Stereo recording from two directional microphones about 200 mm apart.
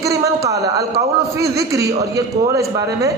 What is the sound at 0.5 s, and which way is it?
Speech, 55° right (ahead or behind).